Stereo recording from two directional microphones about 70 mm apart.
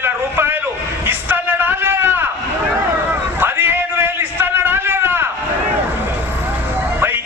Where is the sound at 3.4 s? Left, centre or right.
Right.